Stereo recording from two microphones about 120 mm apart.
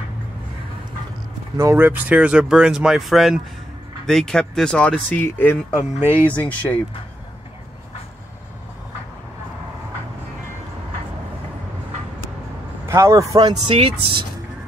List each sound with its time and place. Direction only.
1.6 s speech: 20° right (ahead or behind); by 6.8 s 15° left (ahead or behind)
12.8 s speech: 25° right (ahead or behind)
13.7 s speech: 50° right (ahead or behind)